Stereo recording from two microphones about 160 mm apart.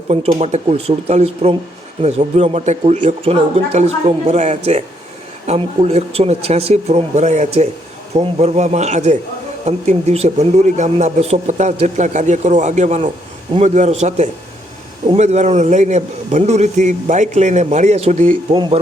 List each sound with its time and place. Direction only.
0.1 s speech: 35° right (ahead or behind); by 18.3 s 55° right (ahead or behind)
18.5 s speech: 30° right (ahead or behind)